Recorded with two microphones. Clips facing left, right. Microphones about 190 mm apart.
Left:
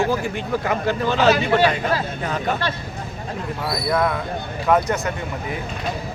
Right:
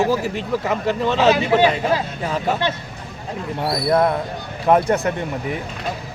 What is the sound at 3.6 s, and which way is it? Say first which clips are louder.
Speech: right 4 dB; 35° right (ahead or behind).